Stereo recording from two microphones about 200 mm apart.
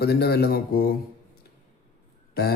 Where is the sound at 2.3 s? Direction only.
50° left (ahead or behind).